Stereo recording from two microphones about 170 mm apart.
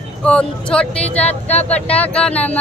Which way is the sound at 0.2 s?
5° left (ahead or behind).